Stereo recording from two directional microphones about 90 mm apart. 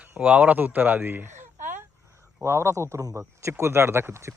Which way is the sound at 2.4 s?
30° right (ahead or behind).